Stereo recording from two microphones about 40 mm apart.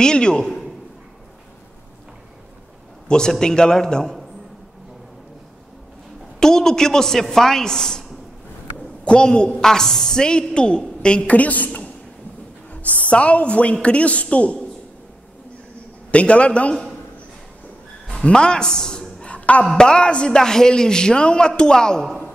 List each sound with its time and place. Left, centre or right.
0.0 s a woman's voice: left
3.1 s a woman's voice: centre
6.4 s a woman's voice: centre
9.0 s a woman's voice: left
9.6 s a woman's voice: centre
11.2 s a woman's voice: left
13.1 s a woman's voice: left
16.1 s a woman's voice: left
18.2 s a woman's voice: left
19.3 s music: left
19.8 s a woman's voice: left
20.3 s a woman's voice: centre